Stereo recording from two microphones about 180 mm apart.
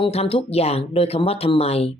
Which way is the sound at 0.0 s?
35° left (ahead or behind).